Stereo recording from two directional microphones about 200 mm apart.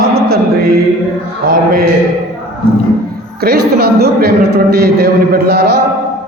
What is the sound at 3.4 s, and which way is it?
A man's voice, 50° right (ahead or behind).